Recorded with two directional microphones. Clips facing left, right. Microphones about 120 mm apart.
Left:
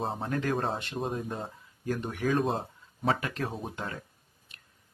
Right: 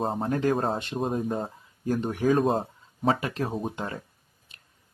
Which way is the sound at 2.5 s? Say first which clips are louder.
Right 5 dB; 40° right (ahead or behind).